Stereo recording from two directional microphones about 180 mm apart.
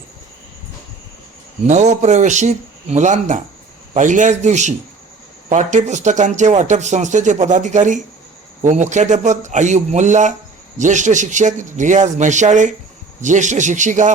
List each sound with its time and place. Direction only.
1.6 s speech: 40° right (ahead or behind)